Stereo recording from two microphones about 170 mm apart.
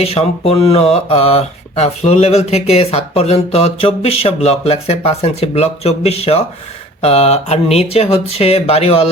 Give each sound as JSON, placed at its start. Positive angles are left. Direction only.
{"t": 0.0, "sound": "speech", "side_deg": 35}